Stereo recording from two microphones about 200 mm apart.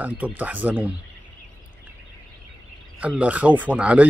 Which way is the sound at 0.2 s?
10° right (ahead or behind).